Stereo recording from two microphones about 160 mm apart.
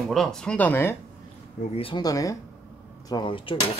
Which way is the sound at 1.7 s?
35° left (ahead or behind).